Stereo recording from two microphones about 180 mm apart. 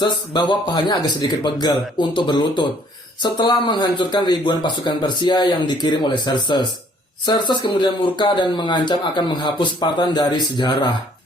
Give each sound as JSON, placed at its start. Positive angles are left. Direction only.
{"t": 0.0, "sound": "speech", "side_deg": 25}